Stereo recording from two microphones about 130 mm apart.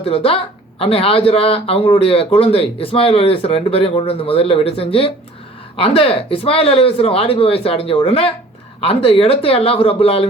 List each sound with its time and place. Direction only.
0.0 s speech: 45° left (ahead or behind)